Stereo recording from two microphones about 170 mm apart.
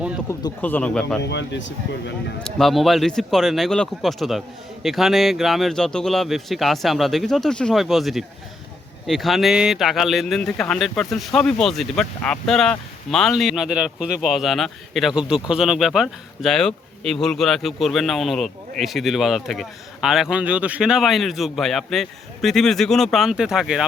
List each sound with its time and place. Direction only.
0.3 s speech: 15° left (ahead or behind)
1.2 s speech: 90° left
2.4 s speech: centre (ahead or behind)